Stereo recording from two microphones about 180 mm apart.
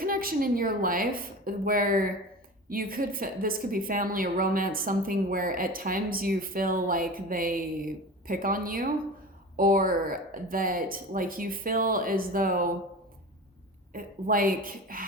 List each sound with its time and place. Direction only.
0.0 s a woman's voice: 55° right (ahead or behind)
13.9 s a woman's voice: 50° right (ahead or behind)